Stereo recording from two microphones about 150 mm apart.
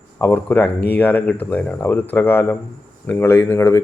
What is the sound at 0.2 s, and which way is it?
Speech, 15° left (ahead or behind).